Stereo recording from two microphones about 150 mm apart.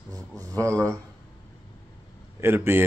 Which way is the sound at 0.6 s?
20° right (ahead or behind).